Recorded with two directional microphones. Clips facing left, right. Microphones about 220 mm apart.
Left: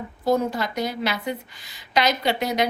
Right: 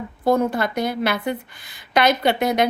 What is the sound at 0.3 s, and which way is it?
A woman's voice, 55° right (ahead or behind).